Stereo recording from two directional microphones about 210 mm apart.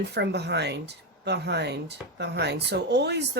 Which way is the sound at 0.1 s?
55° right (ahead or behind).